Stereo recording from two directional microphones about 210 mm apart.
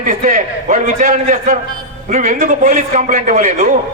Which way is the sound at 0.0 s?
40° right (ahead or behind).